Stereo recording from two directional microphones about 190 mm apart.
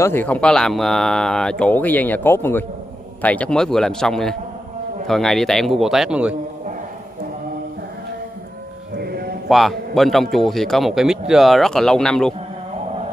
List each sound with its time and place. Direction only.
0.0 s a man's voice: 10° left (ahead or behind); by 6.3 s 5° right (ahead or behind)
8.9 s music: 55° right (ahead or behind)
9.5 s a man's voice: centre (ahead or behind)